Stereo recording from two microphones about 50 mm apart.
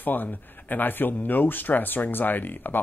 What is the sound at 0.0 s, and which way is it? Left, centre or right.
Speech, left.